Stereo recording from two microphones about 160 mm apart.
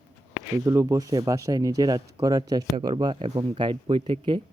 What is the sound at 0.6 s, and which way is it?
Speech, 20° right (ahead or behind).